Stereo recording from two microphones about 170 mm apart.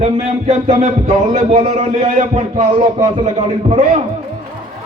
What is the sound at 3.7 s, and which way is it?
Speech, 45° right (ahead or behind).